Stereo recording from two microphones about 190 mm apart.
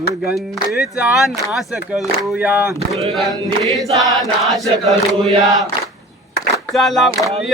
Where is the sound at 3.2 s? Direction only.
Centre (ahead or behind).